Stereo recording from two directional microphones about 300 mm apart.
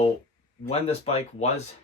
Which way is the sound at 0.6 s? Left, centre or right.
Centre.